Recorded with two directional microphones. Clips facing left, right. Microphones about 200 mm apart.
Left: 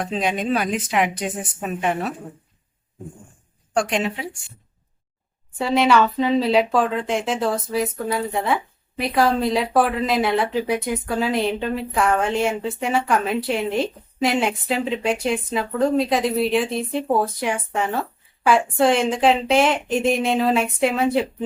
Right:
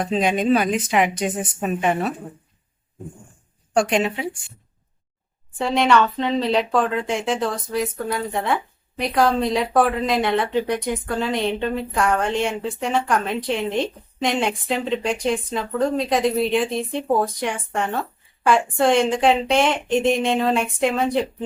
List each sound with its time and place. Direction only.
0.0 s a woman's voice: centre (ahead or behind)
3.8 s a woman's voice: centre (ahead or behind)
5.5 s a woman's voice: 5° left (ahead or behind)